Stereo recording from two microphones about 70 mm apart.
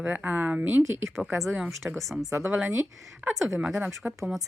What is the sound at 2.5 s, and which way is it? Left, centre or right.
Speech, centre.